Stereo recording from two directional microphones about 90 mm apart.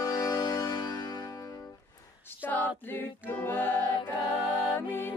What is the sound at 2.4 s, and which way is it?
A capella, 20° left (ahead or behind).